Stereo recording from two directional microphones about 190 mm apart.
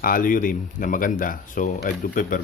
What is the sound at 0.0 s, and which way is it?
Speech, 45° left (ahead or behind).